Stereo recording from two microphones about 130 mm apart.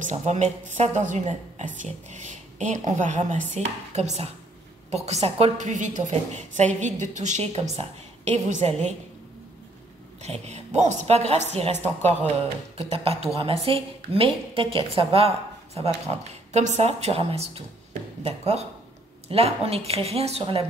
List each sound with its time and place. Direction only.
0.0 s a woman's voice: 60° right (ahead or behind)
10.2 s a woman's voice: 60° right (ahead or behind)
12.9 s a woman's voice: 50° right (ahead or behind)